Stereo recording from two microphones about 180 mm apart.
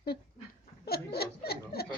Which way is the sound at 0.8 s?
60° left (ahead or behind).